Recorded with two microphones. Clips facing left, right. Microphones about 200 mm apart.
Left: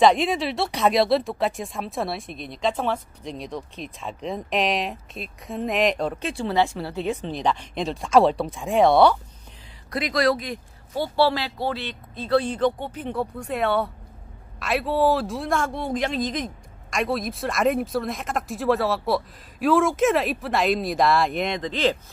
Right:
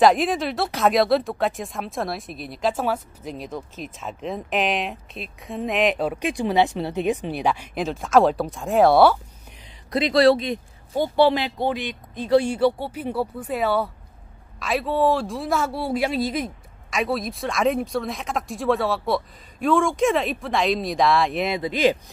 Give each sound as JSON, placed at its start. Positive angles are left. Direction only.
{"t": 0.0, "sound": "speech", "side_deg": 0}
{"t": 9.8, "sound": "speech", "side_deg": -25}